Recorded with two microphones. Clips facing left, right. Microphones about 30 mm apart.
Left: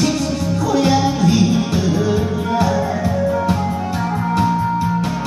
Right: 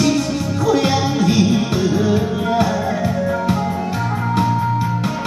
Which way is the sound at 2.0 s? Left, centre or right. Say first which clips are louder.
Right 1 dB; right.